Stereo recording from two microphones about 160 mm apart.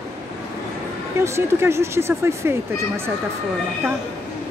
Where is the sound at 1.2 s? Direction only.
15° right (ahead or behind).